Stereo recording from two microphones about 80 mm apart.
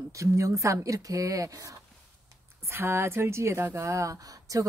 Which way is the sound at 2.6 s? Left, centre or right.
Right.